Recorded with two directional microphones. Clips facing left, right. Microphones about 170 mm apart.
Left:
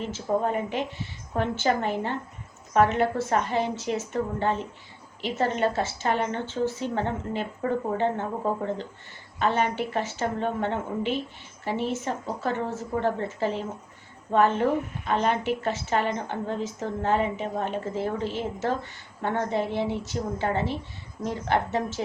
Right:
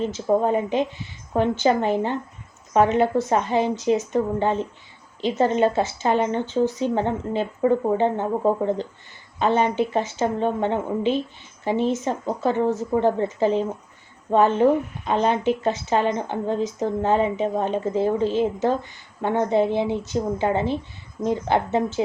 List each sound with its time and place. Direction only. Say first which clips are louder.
0.1 s a woman's voice: right 2 dB; 20° right (ahead or behind)